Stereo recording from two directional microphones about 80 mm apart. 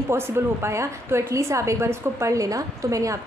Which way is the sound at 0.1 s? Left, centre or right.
Right.